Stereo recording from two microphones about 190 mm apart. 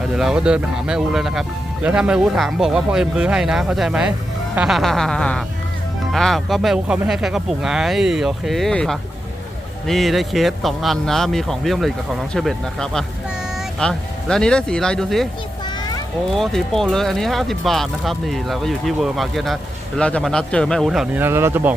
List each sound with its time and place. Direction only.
0.0 s speech: centre (ahead or behind)
15.6 s children playing: 20° left (ahead or behind)
16.3 s speech: centre (ahead or behind)
21.2 s speech: 15° right (ahead or behind)